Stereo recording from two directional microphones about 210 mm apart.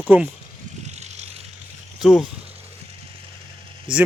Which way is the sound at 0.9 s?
30° right (ahead or behind).